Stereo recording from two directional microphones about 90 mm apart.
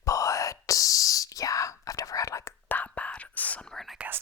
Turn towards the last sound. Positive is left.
turn(degrees=-20)  # may be behind; listen again after turning